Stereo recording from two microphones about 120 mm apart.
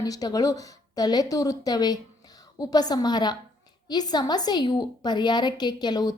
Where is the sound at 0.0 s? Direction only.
30° left (ahead or behind).